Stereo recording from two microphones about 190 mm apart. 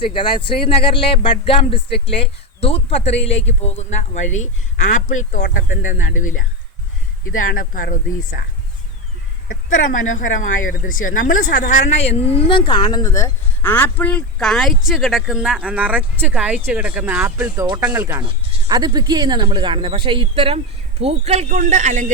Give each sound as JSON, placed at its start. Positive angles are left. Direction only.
{"t": 0.0, "sound": "speech", "side_deg": 25}
{"t": 9.8, "sound": "speech", "side_deg": 55}
{"t": 10.2, "sound": "a woman's voice", "side_deg": 45}
{"t": 18.2, "sound": "speech", "side_deg": -25}